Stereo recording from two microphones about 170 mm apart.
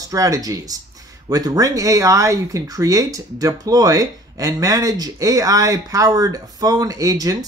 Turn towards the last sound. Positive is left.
turn(degrees=-20)  # may be behind; listen again after turning